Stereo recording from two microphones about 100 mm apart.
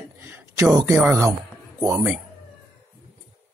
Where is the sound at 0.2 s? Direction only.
20° right (ahead or behind).